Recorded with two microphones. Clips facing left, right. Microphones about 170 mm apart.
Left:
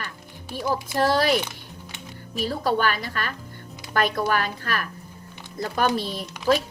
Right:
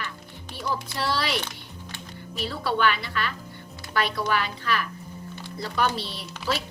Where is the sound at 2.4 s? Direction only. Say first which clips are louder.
Left 2 dB; 45° left (ahead or behind).